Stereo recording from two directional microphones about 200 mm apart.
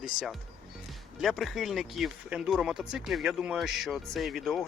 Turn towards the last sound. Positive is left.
turn(degrees=0)  # may be behind; listen again after turning